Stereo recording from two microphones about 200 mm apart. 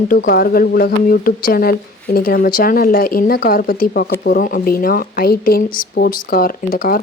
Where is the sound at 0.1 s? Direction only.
45° left (ahead or behind).